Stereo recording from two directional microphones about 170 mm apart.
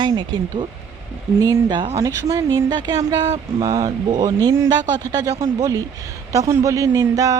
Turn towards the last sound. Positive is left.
turn(degrees=-20)  # may be behind; listen again after turning